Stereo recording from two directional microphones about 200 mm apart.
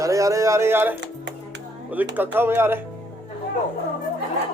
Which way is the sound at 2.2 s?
10° right (ahead or behind).